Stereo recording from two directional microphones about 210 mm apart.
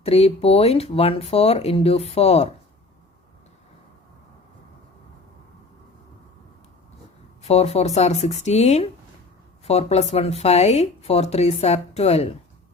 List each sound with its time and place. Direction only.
0.0 s speech: 30° left (ahead or behind)
7.4 s speech: 30° left (ahead or behind)